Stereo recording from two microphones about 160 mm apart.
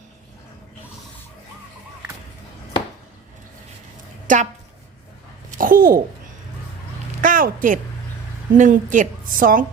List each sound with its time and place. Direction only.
4.3 s a woman's voice: 55° right (ahead or behind)
5.5 s a woman's voice: 60° right (ahead or behind)
7.2 s a woman's voice: 60° right (ahead or behind)